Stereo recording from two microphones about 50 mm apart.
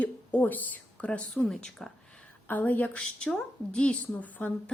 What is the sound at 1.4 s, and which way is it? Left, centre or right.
Speech, centre.